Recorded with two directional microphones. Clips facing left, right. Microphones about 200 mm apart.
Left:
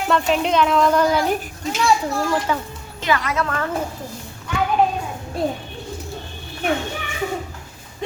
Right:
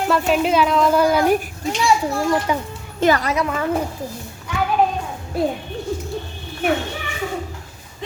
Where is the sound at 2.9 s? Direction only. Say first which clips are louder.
Right 5 dB; 40° right (ahead or behind).